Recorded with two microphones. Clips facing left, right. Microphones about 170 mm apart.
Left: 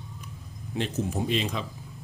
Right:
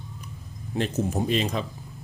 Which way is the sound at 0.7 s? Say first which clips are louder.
Right 3 dB; 45° right (ahead or behind).